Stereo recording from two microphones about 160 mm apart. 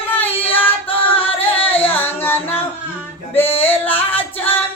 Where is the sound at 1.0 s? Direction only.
35° left (ahead or behind).